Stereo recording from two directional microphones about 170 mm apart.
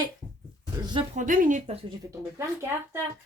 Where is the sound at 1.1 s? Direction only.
50° right (ahead or behind).